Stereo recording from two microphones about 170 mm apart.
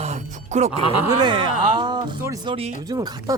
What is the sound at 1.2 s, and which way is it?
Speech, 25° right (ahead or behind).